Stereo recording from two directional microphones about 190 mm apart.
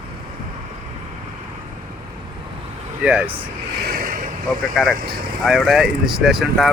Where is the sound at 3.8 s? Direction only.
50° right (ahead or behind).